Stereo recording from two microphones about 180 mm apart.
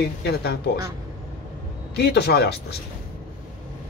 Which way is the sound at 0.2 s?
65° left (ahead or behind).